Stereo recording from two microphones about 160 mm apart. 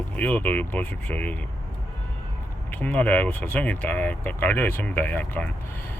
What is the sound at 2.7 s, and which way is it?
Speech, 10° left (ahead or behind).